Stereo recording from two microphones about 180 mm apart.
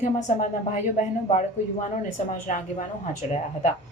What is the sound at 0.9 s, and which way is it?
Speech, 40° left (ahead or behind).